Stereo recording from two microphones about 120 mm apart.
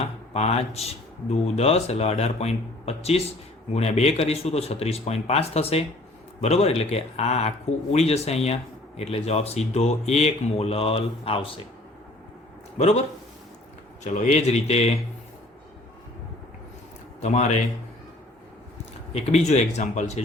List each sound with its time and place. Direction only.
0.3 s speech: 60° left (ahead or behind)
12.7 s a man's voice: 65° left (ahead or behind)
14.0 s a man's voice: 80° left
17.2 s a man's voice: 75° left (ahead or behind)
19.1 s a man's voice: 65° left (ahead or behind)